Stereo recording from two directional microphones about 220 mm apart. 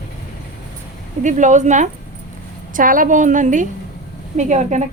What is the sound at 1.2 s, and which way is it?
Speech, 35° right (ahead or behind).